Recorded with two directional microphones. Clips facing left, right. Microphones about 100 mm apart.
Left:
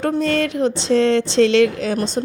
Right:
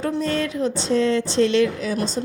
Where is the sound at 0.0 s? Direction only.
75° left (ahead or behind).